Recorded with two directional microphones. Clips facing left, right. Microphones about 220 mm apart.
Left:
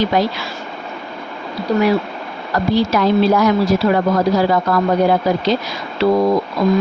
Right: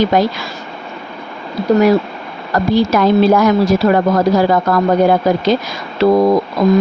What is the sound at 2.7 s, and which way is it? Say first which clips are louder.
Speech: right 3 dB; 50° right (ahead or behind).